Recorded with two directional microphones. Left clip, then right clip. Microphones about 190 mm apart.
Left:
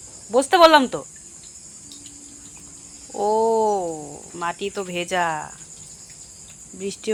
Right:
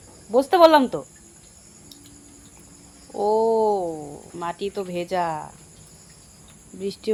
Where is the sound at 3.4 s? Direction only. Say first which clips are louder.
Left 1 dB; 5° left (ahead or behind).